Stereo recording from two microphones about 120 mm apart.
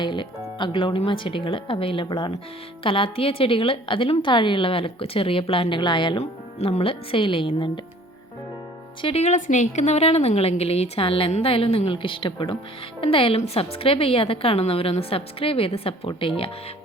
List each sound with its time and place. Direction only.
0.0 s a woman's voice: 40° left (ahead or behind)
9.0 s a woman's voice: 50° left (ahead or behind)
9.2 s a woman's voice: 85° left; by 16.5 s 50° left (ahead or behind)